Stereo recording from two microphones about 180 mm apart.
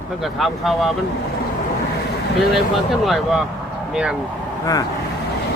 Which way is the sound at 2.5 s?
Centre (ahead or behind).